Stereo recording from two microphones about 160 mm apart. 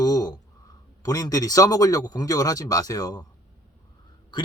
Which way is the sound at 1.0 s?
25° left (ahead or behind).